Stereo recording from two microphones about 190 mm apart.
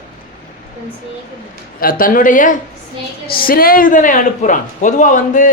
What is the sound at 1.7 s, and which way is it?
A man's voice, 50° left (ahead or behind).